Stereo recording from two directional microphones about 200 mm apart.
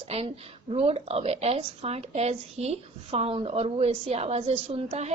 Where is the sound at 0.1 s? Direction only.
30° right (ahead or behind).